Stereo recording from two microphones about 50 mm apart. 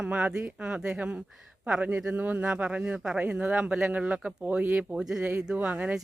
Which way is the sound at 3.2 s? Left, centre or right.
Right.